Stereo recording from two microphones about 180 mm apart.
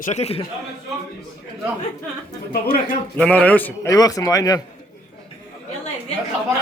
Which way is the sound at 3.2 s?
10° left (ahead or behind).